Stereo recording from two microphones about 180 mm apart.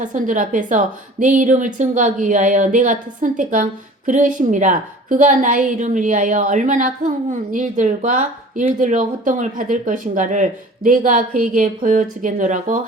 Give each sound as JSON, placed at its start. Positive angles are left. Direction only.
{"t": 0.0, "sound": "a woman's voice", "side_deg": -45}